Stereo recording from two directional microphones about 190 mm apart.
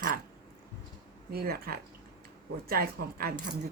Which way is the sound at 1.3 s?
50° right (ahead or behind).